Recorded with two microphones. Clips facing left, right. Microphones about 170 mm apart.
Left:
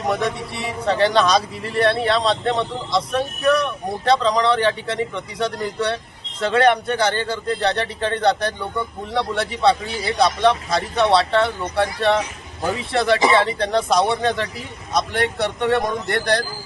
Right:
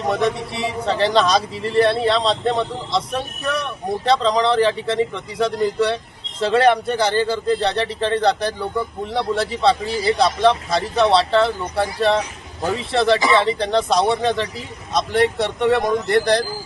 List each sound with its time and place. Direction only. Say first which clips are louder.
0.3 s speech: right 3 dB; centre (ahead or behind)
16.2 s speech: right 3 dB; 25° right (ahead or behind)